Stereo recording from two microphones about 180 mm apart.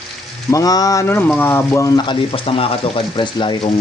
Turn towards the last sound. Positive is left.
turn(degrees=25)  # may be behind; listen again after turning